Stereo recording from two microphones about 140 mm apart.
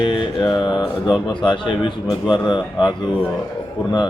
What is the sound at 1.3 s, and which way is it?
Speech, 35° left (ahead or behind).